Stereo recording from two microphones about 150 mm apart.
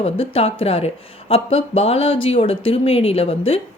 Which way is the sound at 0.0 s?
40° left (ahead or behind).